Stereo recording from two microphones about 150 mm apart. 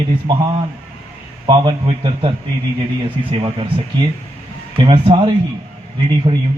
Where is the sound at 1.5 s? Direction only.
35° right (ahead or behind).